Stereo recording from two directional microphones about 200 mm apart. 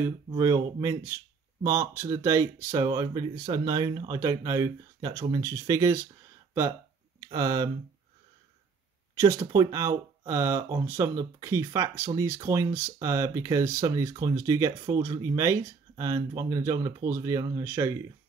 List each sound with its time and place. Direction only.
0.4 s speech: 15° right (ahead or behind)
7.2 s speech: 20° right (ahead or behind)
9.2 s speech: 15° right (ahead or behind)